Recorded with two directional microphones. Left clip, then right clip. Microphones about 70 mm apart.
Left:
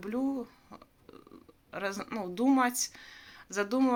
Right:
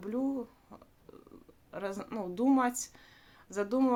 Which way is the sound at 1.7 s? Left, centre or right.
Right.